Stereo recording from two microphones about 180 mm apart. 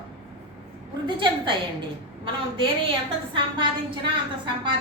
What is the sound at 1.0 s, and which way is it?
A woman's voice, 25° right (ahead or behind).